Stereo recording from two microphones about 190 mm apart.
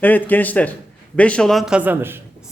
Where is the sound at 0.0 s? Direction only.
10° left (ahead or behind); by 2.2 s 10° right (ahead or behind).